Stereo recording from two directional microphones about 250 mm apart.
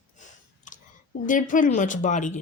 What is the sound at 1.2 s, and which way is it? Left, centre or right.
Speech, left.